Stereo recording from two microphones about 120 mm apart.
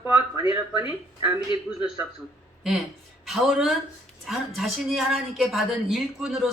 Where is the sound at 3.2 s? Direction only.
Centre (ahead or behind).